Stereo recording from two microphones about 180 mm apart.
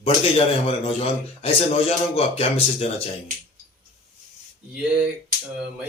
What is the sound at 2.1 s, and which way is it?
Speech, 35° left (ahead or behind).